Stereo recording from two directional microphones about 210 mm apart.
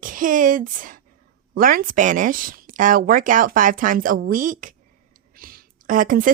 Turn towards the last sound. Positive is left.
turn(degrees=-40)  # may be behind; listen again after turning